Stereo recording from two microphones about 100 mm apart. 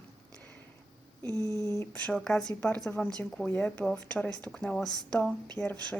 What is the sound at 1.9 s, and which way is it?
Speech, 10° left (ahead or behind).